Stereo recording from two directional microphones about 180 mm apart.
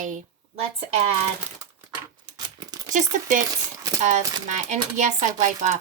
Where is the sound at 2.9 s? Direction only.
45° right (ahead or behind).